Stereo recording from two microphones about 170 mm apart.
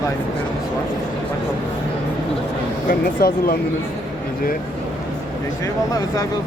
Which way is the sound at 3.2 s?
60° left (ahead or behind).